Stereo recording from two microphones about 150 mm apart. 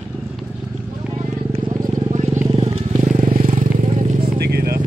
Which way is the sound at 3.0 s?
45° right (ahead or behind).